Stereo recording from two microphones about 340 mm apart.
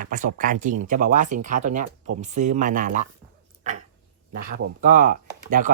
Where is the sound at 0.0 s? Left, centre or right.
Right.